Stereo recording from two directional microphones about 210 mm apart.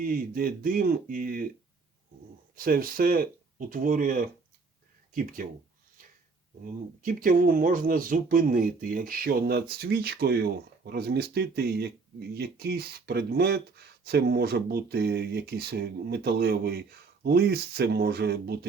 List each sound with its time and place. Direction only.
0.0 s speech: 45° right (ahead or behind)
2.6 s speech: 45° right (ahead or behind)
7.0 s speech: 40° right (ahead or behind)